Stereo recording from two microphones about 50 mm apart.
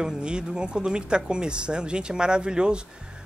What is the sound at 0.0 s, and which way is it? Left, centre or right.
Speech, centre.